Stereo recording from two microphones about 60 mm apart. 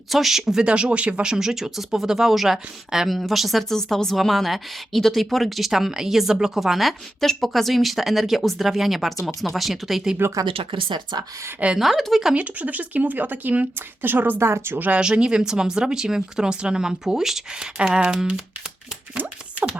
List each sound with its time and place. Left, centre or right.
0.1 s speech: centre
10.4 s speech: right
11.8 s speech: centre
12.3 s speech: right
14.8 s speech: right
15.0 s speech: centre
19.1 s a sound: right